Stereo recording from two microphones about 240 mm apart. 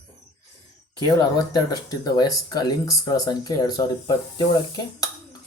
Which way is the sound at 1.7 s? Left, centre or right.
Centre.